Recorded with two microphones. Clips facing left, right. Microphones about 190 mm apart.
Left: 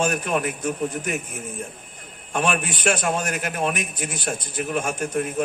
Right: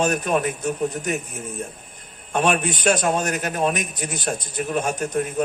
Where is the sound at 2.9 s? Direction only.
40° right (ahead or behind).